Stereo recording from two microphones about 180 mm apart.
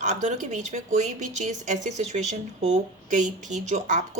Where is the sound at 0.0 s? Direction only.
40° right (ahead or behind).